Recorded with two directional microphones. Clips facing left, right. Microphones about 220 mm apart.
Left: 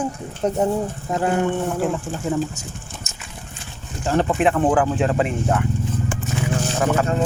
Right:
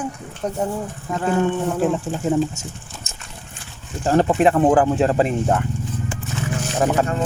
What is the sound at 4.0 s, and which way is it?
Speech, 40° right (ahead or behind).